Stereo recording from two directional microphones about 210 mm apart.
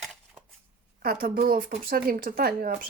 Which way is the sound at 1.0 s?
45° right (ahead or behind).